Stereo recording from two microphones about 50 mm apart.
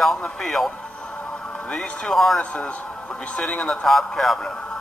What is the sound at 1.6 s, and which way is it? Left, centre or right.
Speech, left.